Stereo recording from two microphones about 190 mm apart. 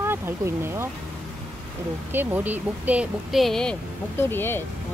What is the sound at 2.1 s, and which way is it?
Speech, 10° right (ahead or behind).